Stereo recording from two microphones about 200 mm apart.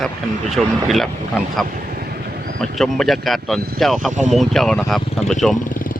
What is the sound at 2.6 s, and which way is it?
Speech, centre (ahead or behind).